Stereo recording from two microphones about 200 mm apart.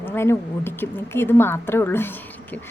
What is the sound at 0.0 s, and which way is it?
A woman's voice, 10° left (ahead or behind).